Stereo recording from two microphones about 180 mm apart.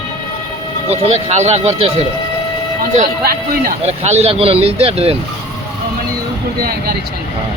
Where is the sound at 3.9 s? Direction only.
35° right (ahead or behind).